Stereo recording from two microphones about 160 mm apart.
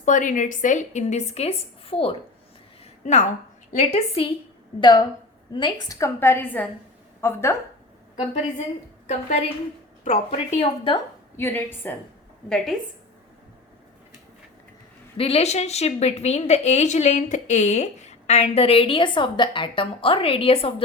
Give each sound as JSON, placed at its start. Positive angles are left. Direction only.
{"t": 0.0, "sound": "speech", "side_deg": 55}
{"t": 3.0, "sound": "speech", "side_deg": 50}
{"t": 4.8, "sound": "a woman's voice", "side_deg": 25}
{"t": 8.2, "sound": "a woman's voice", "side_deg": 40}
{"t": 10.0, "sound": "speech", "side_deg": 45}
{"t": 11.3, "sound": "a woman's voice", "side_deg": 15}
{"t": 15.2, "sound": "a woman's voice", "side_deg": 40}